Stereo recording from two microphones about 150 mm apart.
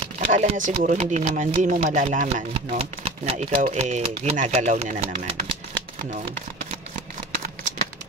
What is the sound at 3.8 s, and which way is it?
Speech, 45° right (ahead or behind).